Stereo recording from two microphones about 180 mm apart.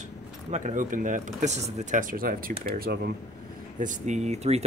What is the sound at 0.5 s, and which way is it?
Speech, 45° right (ahead or behind).